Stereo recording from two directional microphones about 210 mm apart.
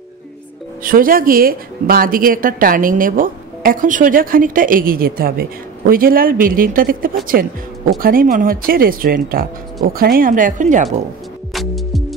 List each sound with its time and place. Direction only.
0.8 s speech: 40° right (ahead or behind)
11.5 s music: centre (ahead or behind)